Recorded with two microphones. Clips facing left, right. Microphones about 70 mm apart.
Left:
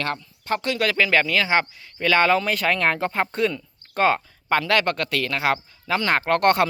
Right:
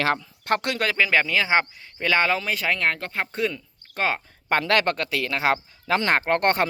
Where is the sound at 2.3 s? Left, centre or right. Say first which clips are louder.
Left 4 dB; centre.